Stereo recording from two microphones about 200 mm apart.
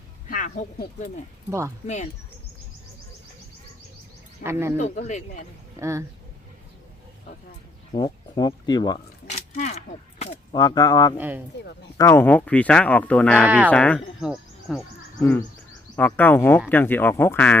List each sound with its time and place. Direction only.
0.3 s speech: 40° left (ahead or behind)
1.5 s speech: 15° right (ahead or behind)
4.4 s speech: 15° right (ahead or behind)
4.8 s speech: 35° left (ahead or behind)
5.8 s speech: 15° right (ahead or behind)
7.9 s speech: 20° left (ahead or behind)
9.6 s speech: 35° left (ahead or behind)
10.5 s speech: 20° left (ahead or behind)
11.2 s speech: 10° right (ahead or behind)
11.9 s speech: 15° left (ahead or behind); by 14.8 s centre (ahead or behind)
15.2 s speech: 10° left (ahead or behind)